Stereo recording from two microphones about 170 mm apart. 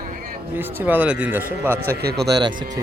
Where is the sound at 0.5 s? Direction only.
10° right (ahead or behind).